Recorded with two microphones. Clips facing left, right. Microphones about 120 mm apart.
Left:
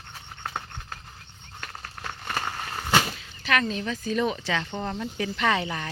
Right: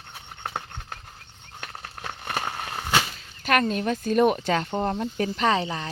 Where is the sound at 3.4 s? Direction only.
45° right (ahead or behind).